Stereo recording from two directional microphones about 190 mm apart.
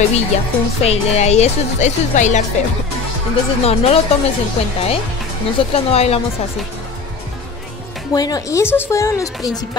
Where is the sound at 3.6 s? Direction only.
30° left (ahead or behind).